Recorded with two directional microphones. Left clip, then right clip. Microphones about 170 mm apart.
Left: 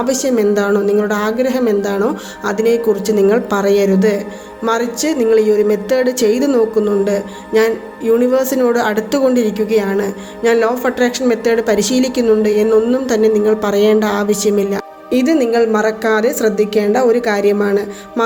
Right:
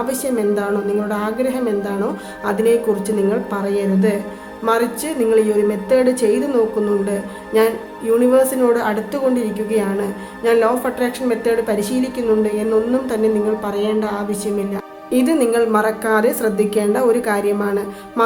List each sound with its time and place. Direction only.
0.0 s speech: 25° left (ahead or behind)
4.6 s speech: 30° left (ahead or behind)
15.1 s a woman's voice: 15° left (ahead or behind)